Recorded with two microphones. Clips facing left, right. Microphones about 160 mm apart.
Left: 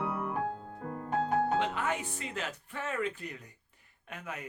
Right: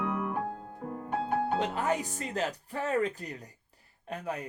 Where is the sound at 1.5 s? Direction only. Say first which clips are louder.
Right 2 dB; 40° right (ahead or behind).